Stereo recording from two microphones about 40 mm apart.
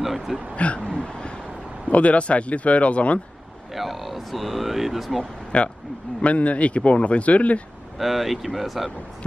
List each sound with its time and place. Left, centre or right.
0.0 s a sound: centre
0.7 s a sound: left
1.9 s speech: left
3.7 s speech: centre
5.2 s speech: left
8.0 s speech: centre